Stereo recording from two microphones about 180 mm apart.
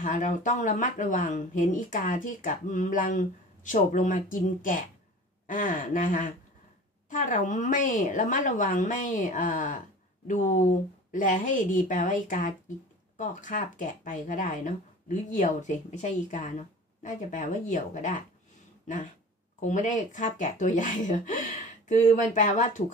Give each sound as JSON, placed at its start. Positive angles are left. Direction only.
{"t": 0.0, "sound": "speech", "side_deg": 45}
{"t": 19.6, "sound": "speech", "side_deg": 45}